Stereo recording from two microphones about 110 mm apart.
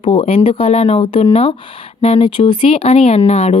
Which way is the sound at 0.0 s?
60° left (ahead or behind).